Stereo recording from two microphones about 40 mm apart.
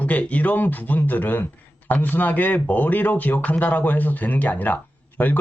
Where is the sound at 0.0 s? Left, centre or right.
Left.